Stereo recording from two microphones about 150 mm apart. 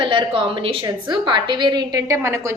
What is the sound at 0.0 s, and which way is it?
A woman's voice, 35° right (ahead or behind).